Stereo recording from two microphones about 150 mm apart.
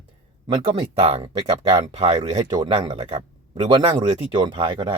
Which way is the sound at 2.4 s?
30° right (ahead or behind).